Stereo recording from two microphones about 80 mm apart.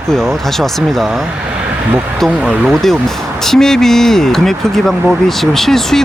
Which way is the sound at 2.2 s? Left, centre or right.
Centre.